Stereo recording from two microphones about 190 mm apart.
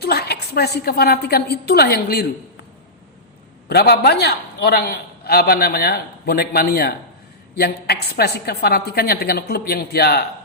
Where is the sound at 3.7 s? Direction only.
55° left (ahead or behind).